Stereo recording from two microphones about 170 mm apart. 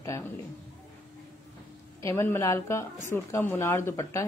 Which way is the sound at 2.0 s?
15° left (ahead or behind).